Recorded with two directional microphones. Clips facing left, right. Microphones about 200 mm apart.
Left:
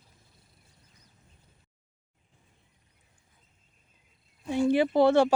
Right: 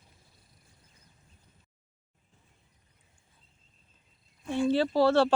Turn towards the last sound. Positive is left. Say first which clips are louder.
# left 2 dB
turn(degrees=15)  # may be behind; listen again after turning